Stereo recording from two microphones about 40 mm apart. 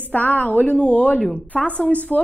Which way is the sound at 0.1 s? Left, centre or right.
Left.